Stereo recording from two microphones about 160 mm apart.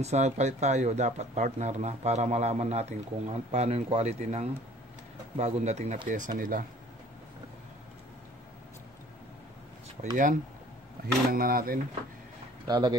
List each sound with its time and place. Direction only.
0.0 s speech: 45° right (ahead or behind)
10.0 s speech: 35° right (ahead or behind)
11.2 s speech: 65° right (ahead or behind)
12.6 s speech: 25° right (ahead or behind)